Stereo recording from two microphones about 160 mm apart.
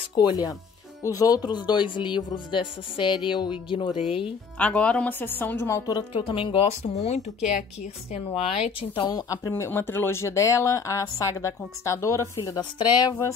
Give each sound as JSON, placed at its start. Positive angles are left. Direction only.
{"t": 0.1, "sound": "a woman's voice", "side_deg": 25}
{"t": 3.9, "sound": "speech", "side_deg": -5}
{"t": 4.6, "sound": "a woman's voice", "side_deg": 10}
{"t": 9.3, "sound": "speech", "side_deg": 20}